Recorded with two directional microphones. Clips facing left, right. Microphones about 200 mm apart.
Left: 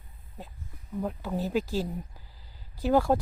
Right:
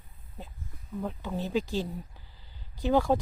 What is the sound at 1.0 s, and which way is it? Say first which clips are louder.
Speech: left 2 dB; 10° left (ahead or behind).